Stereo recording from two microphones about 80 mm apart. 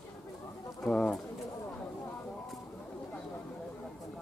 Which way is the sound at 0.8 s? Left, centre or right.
Centre.